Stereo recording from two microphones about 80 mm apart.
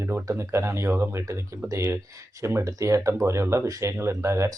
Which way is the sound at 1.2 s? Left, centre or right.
Right.